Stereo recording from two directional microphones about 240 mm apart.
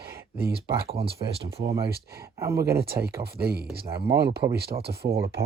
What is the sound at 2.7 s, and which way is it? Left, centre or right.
Speech, right.